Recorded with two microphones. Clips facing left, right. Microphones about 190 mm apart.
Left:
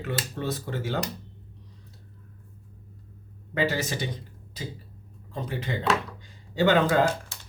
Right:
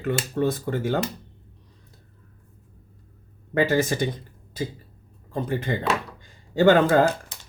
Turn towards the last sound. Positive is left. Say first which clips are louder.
# right 4 dB
turn(degrees=-50)  # may be behind; listen again after turning